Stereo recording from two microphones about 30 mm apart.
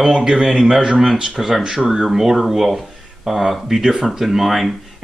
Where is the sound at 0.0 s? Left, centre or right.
Centre.